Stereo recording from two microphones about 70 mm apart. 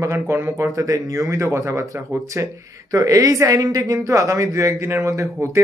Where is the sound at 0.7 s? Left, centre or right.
Right.